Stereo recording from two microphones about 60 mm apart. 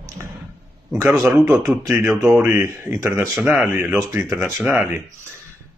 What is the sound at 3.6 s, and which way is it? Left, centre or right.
Speech, right.